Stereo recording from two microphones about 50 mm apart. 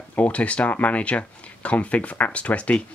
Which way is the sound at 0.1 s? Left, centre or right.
Left.